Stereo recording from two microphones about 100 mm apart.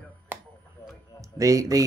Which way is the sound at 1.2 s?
35° right (ahead or behind).